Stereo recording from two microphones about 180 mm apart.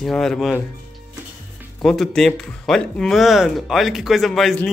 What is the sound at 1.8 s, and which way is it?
Speech, centre (ahead or behind).